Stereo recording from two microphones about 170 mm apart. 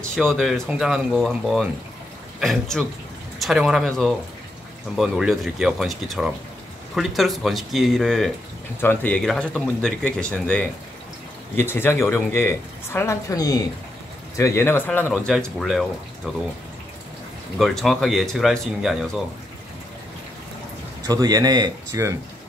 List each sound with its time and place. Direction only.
0.1 s speech: 5° left (ahead or behind)
17.6 s speech: centre (ahead or behind)
21.1 s a man's voice: 20° right (ahead or behind)